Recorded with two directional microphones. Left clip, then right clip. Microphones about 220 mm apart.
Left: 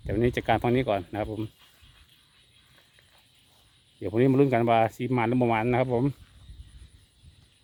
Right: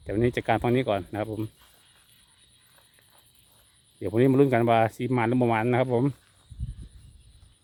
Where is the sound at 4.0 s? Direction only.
10° right (ahead or behind).